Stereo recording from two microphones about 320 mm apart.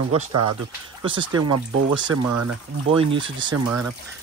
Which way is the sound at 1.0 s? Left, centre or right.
Centre.